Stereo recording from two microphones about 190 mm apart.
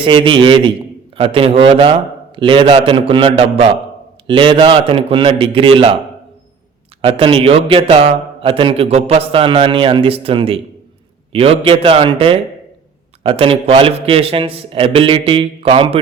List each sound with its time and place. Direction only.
0.0 s a man's voice: 25° right (ahead or behind)
7.0 s speech: 30° right (ahead or behind)